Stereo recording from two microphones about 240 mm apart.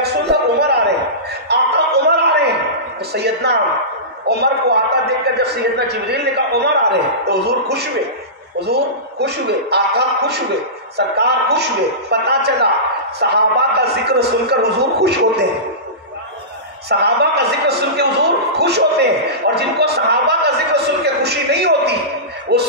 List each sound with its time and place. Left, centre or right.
0.0 s a sound: right
3.1 s a man's voice: right
16.9 s a man's voice: right